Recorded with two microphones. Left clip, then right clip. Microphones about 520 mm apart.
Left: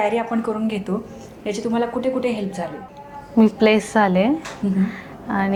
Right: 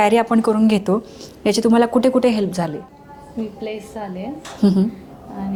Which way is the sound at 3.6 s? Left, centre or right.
Left.